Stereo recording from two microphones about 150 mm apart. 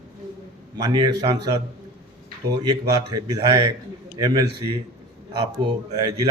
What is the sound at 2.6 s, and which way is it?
A man's voice, 25° right (ahead or behind).